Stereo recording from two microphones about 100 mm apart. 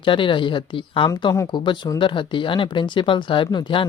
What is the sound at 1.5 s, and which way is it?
Speech, 45° left (ahead or behind).